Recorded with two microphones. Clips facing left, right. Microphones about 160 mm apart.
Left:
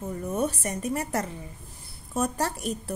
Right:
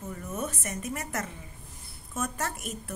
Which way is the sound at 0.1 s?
30° left (ahead or behind).